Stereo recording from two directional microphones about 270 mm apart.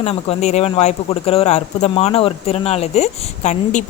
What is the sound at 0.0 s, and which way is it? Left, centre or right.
Speech, left.